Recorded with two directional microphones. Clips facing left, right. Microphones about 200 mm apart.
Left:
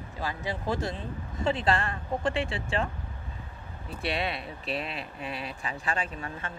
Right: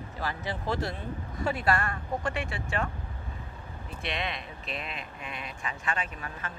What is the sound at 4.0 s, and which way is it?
Speech, 35° left (ahead or behind).